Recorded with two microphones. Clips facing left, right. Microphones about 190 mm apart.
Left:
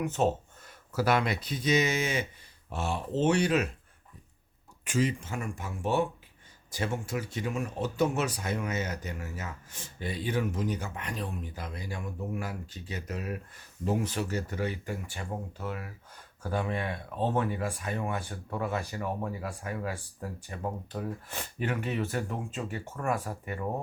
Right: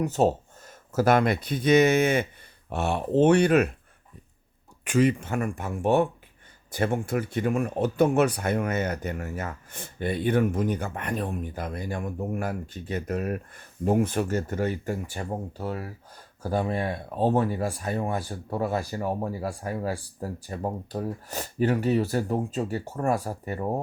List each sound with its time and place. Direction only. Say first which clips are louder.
0.0 s speech: right 5 dB; 35° right (ahead or behind)
0.9 s speech: right 6 dB; 50° right (ahead or behind)
4.9 s speech: right 7 dB; 60° right (ahead or behind); by 23.6 s 35° right (ahead or behind)